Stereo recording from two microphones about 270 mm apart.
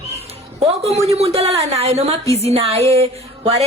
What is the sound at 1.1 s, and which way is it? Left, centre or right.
A woman's voice, right.